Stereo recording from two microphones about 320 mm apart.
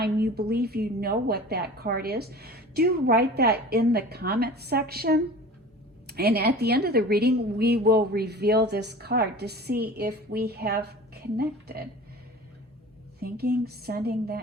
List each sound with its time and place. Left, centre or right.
0.0 s a woman's voice: right
13.1 s a woman's voice: right